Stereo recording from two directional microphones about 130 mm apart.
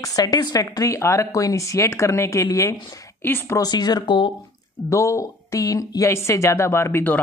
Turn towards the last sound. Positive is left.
turn(degrees=15)  # may be behind; listen again after turning